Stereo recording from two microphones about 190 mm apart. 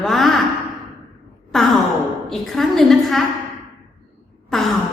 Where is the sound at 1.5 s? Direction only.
Centre (ahead or behind).